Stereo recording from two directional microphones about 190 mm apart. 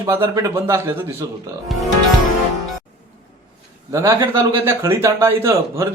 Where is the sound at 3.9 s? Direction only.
15° right (ahead or behind).